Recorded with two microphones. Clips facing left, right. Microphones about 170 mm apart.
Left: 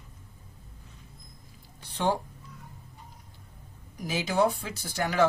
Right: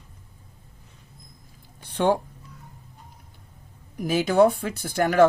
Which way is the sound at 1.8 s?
55° right (ahead or behind).